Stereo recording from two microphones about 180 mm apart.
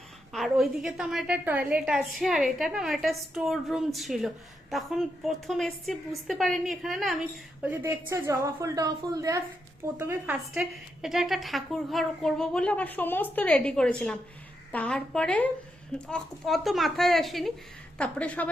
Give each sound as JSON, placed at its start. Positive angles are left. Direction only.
{"t": 0.3, "sound": "a woman's voice", "side_deg": 0}
{"t": 7.6, "sound": "a woman's voice", "side_deg": -15}
{"t": 10.3, "sound": "a woman's voice", "side_deg": -5}